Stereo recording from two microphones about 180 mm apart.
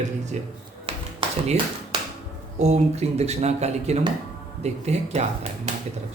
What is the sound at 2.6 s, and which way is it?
Speech, 40° right (ahead or behind).